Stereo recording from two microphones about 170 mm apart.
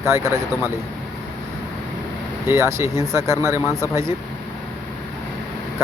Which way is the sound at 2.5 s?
15° right (ahead or behind).